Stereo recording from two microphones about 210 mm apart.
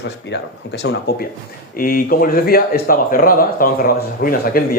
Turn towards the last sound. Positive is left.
turn(degrees=45)  # may be behind; listen again after turning